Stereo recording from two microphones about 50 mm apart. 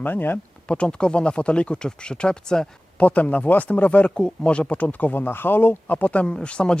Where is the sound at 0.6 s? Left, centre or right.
Left.